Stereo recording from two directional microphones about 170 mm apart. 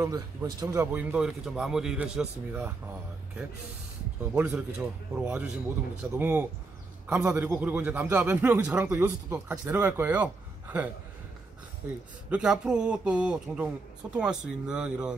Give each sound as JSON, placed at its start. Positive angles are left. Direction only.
{"t": 0.0, "sound": "a man's voice", "side_deg": -20}
{"t": 1.1, "sound": "a man's voice", "side_deg": -5}
{"t": 4.3, "sound": "a man's voice", "side_deg": -10}